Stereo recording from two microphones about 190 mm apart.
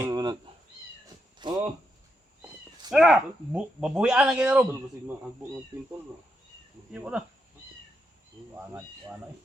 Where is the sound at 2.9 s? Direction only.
5° right (ahead or behind).